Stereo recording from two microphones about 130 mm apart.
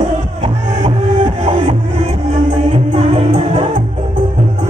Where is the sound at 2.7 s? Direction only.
45° right (ahead or behind).